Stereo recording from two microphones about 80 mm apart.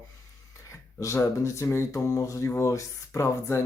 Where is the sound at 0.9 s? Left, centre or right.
Left.